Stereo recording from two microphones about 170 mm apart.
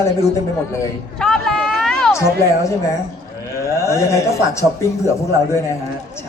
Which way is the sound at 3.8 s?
15° left (ahead or behind).